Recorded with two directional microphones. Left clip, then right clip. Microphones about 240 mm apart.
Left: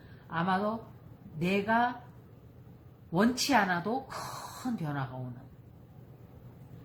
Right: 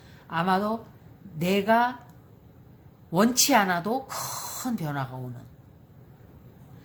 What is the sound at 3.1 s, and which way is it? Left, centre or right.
A woman's voice, right.